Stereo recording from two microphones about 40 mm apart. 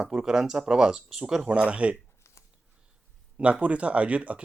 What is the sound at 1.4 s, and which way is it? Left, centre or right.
Speech, right.